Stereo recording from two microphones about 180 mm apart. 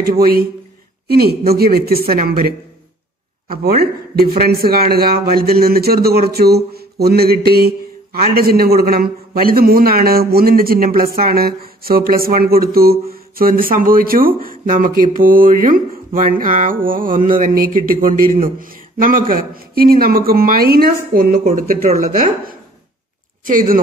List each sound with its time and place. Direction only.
0.2 s a man's voice: 55° right (ahead or behind)